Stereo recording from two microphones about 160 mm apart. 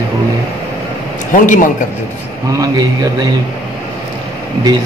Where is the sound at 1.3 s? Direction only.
55° left (ahead or behind).